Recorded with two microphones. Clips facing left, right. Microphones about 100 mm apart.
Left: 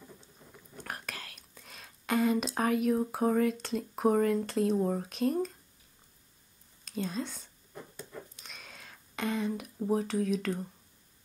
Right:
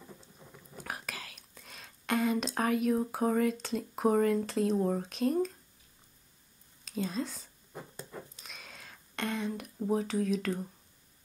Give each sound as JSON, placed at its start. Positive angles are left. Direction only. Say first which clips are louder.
{"t": 0.2, "sound": "speech", "louder": "right 1 dB", "side_deg": -5}
{"t": 6.8, "sound": "speech", "louder": "right 1 dB", "side_deg": 0}
{"t": 7.9, "sound": "dog", "louder": "right 1 dB", "side_deg": -30}
{"t": 8.4, "sound": "a sound", "louder": "even", "side_deg": 0}